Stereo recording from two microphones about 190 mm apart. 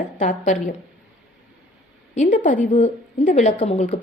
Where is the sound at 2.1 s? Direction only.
35° left (ahead or behind).